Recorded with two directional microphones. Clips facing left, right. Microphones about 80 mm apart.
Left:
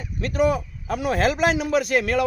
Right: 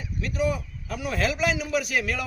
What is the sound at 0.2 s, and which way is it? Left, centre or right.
A man's voice, left.